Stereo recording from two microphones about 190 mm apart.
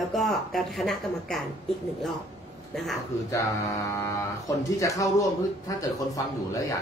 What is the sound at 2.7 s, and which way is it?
Speech, centre (ahead or behind).